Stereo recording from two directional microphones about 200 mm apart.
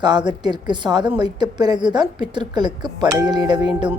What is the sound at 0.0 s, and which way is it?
A woman's voice, 20° right (ahead or behind).